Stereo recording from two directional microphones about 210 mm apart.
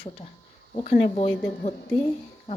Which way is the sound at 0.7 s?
30° left (ahead or behind).